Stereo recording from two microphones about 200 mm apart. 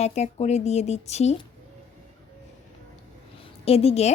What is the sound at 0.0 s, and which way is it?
Speech, 35° left (ahead or behind).